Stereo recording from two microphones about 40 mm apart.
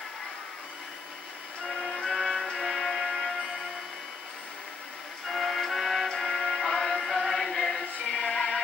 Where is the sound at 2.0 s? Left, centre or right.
Centre.